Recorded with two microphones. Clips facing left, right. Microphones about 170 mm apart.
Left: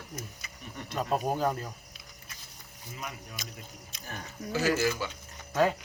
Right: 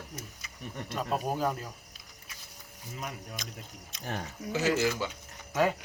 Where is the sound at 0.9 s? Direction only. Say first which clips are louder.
Left 2 dB; centre (ahead or behind).